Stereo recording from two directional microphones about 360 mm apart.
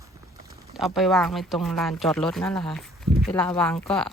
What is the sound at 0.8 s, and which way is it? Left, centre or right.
Speech, centre.